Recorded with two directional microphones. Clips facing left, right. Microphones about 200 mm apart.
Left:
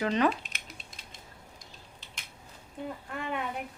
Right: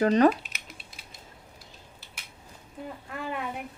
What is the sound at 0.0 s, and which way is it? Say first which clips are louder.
Speech: right 6 dB; 40° right (ahead or behind).